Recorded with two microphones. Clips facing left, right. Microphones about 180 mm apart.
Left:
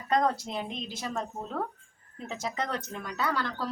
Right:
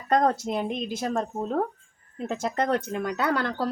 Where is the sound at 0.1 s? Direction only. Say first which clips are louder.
Right 4 dB; 50° right (ahead or behind).